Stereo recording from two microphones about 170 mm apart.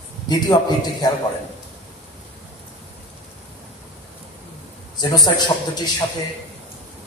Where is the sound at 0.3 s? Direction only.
20° left (ahead or behind).